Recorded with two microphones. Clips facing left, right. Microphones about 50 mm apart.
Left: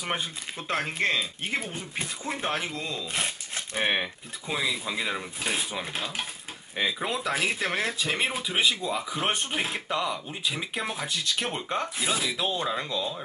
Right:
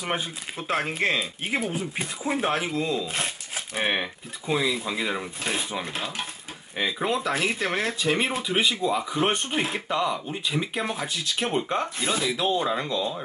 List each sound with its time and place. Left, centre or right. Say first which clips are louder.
0.0 s speech: right 2 dB; centre